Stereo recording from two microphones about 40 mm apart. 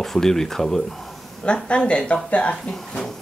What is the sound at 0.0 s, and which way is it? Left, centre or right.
Speech, centre.